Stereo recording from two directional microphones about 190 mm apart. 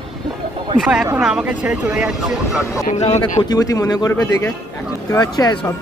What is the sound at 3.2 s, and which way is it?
A man's voice, 20° left (ahead or behind).